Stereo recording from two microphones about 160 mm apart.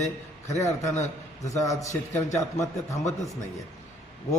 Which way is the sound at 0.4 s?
20° left (ahead or behind).